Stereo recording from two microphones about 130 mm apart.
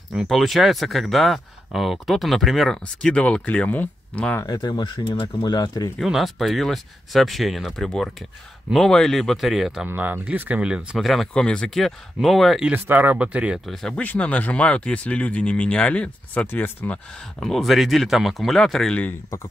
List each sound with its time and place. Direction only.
0.1 s speech: centre (ahead or behind)
4.4 s speech: 30° left (ahead or behind)
5.9 s speech: centre (ahead or behind)
9.8 s speech: 15° right (ahead or behind)
12.7 s speech: 15° right (ahead or behind)
13.7 s speech: 5° left (ahead or behind)
17.4 s speech: centre (ahead or behind)